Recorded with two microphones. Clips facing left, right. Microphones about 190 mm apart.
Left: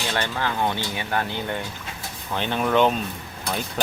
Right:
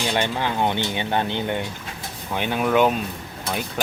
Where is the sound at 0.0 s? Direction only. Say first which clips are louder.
Right 3 dB; 20° right (ahead or behind).